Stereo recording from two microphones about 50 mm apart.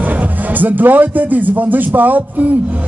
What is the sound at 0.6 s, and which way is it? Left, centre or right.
A man's voice, right.